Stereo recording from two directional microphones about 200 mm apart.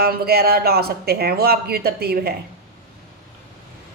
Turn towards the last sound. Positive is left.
turn(degrees=-50)  # may be behind; listen again after turning